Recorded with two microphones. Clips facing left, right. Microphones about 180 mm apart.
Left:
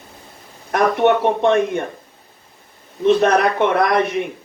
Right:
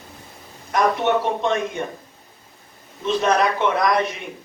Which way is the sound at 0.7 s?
60° left (ahead or behind).